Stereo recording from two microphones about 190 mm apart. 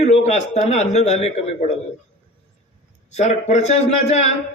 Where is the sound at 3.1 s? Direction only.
35° left (ahead or behind).